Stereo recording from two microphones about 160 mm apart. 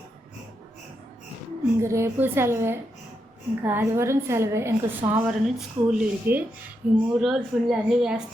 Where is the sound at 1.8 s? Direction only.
15° right (ahead or behind).